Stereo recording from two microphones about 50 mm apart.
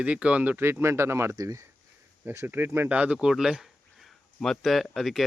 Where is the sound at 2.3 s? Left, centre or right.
Right.